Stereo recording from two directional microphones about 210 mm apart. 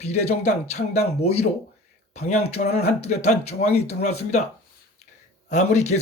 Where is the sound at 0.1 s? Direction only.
30° left (ahead or behind).